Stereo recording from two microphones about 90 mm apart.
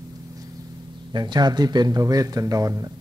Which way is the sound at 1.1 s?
55° right (ahead or behind).